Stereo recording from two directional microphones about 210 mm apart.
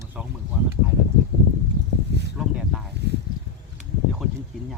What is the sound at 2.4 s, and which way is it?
Speech, 5° right (ahead or behind).